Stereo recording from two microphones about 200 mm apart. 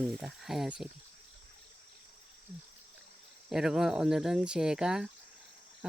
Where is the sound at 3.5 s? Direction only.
5° right (ahead or behind).